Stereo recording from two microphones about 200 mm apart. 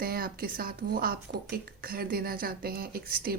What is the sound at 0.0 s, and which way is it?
Speech, 45° right (ahead or behind).